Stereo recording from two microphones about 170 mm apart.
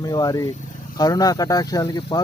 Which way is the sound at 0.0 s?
25° left (ahead or behind).